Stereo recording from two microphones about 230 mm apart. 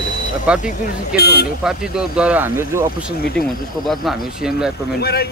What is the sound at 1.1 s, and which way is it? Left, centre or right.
Speech, left.